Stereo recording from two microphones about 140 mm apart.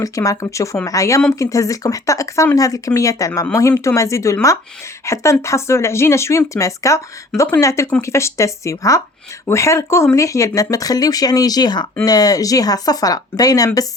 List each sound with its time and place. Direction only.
0.0 s speech: 25° left (ahead or behind)